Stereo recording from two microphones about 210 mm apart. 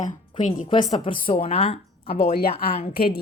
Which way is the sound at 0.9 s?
25° left (ahead or behind).